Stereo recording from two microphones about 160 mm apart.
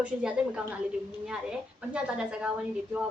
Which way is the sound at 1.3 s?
5° right (ahead or behind).